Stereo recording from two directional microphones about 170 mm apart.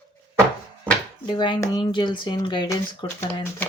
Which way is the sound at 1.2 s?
30° left (ahead or behind).